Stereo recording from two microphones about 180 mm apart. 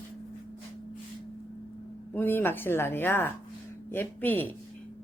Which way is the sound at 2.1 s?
10° left (ahead or behind).